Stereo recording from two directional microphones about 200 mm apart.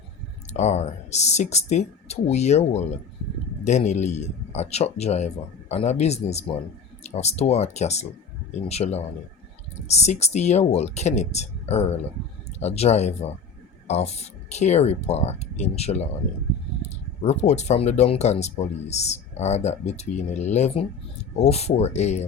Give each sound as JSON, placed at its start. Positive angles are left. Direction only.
{"t": 0.5, "sound": "speech", "side_deg": 35}
{"t": 17.2, "sound": "speech", "side_deg": 35}